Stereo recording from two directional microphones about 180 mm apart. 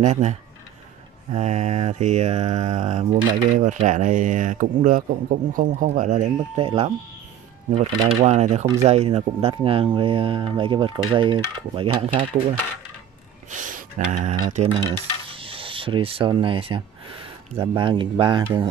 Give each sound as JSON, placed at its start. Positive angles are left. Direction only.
{"t": 0.0, "sound": "mantra", "side_deg": -40}
{"t": 8.2, "sound": "mantra", "side_deg": -40}
{"t": 8.8, "sound": "speech", "side_deg": -35}
{"t": 13.5, "sound": "a sound", "side_deg": -45}
{"t": 14.5, "sound": "coin", "side_deg": -35}
{"t": 17.6, "sound": "speech", "side_deg": -25}